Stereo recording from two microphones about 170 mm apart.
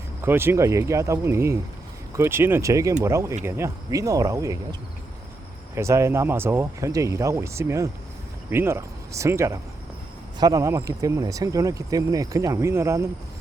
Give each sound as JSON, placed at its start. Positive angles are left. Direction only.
{"t": 0.2, "sound": "speech", "side_deg": -15}